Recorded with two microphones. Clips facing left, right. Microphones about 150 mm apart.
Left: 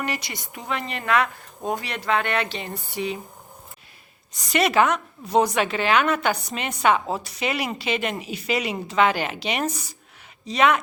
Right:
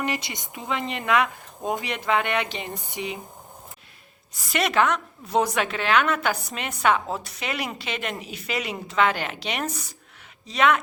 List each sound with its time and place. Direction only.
0.0 s speech: 20° right (ahead or behind)
4.4 s a woman's voice: centre (ahead or behind)